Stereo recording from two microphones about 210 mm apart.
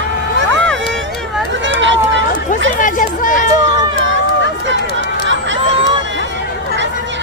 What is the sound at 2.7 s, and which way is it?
Chatter, 40° left (ahead or behind).